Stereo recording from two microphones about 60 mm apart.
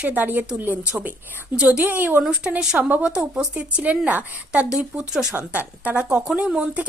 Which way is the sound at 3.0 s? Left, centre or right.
Centre.